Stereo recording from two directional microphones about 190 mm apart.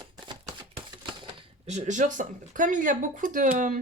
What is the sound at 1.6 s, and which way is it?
Speech, 35° right (ahead or behind).